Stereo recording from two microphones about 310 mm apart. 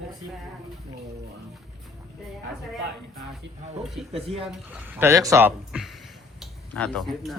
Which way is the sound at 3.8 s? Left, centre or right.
Centre.